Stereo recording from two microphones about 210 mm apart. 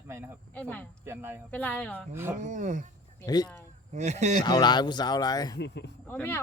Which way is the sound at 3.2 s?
20° left (ahead or behind).